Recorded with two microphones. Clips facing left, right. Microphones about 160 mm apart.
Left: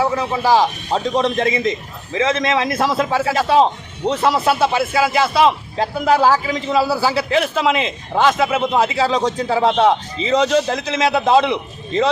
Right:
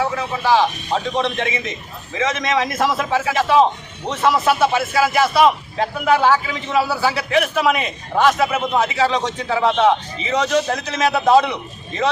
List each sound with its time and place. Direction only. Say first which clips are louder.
0.0 s speech: left 3 dB; 35° left (ahead or behind)